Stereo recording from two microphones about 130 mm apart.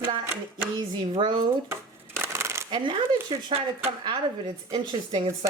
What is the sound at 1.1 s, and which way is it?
Speech, 35° right (ahead or behind).